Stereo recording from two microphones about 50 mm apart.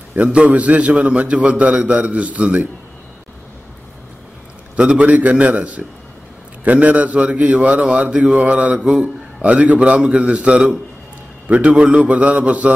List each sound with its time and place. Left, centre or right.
0.2 s a man's voice: right
4.7 s a man's voice: right
8.7 s a man's voice: centre
9.4 s a man's voice: right